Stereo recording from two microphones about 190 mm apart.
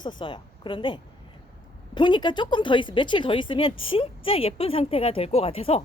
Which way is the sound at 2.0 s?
25° left (ahead or behind).